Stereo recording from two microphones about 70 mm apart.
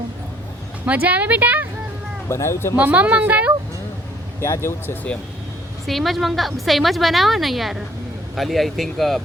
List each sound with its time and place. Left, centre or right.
0.9 s speech: right
2.3 s speech: left
2.7 s speech: right
4.4 s speech: left
5.8 s a woman's voice: centre